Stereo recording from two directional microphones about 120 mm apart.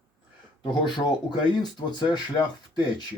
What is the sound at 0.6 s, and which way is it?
Speech, 35° left (ahead or behind).